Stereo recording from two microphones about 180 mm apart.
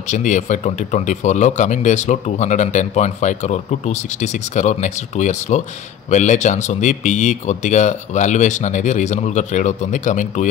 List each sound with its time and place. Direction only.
0.1 s speech: 45° left (ahead or behind)